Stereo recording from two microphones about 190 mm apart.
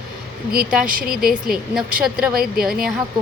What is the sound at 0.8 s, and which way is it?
Speech, 50° right (ahead or behind).